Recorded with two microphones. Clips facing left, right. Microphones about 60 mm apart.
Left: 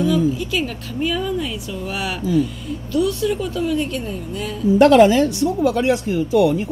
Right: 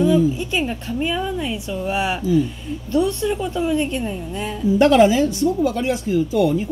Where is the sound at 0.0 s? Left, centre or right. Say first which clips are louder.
Right 2 dB; right.